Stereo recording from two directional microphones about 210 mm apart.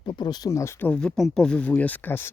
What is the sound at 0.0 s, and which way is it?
Speech, 20° left (ahead or behind).